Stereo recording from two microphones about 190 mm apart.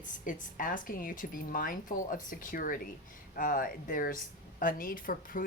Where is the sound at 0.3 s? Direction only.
45° left (ahead or behind).